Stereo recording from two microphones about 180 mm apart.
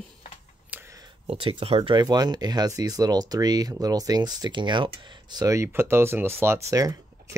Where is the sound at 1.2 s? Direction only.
30° right (ahead or behind).